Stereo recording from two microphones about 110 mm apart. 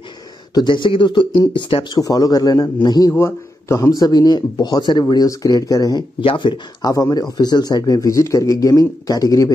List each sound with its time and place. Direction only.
0.6 s speech: 45° left (ahead or behind)
2.0 s a man's voice: 30° left (ahead or behind)
3.1 s a man's voice: 20° left (ahead or behind)
6.2 s speech: 45° left (ahead or behind)
6.9 s a man's voice: 30° left (ahead or behind)